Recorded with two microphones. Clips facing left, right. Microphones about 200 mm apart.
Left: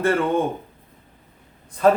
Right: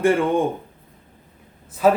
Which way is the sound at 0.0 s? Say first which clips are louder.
Right 2 dB; 15° right (ahead or behind).